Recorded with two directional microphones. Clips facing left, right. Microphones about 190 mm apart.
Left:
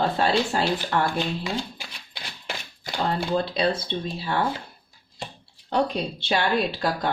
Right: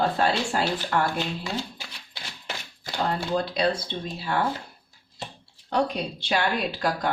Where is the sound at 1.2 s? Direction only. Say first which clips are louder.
Left 2 dB; 15° left (ahead or behind).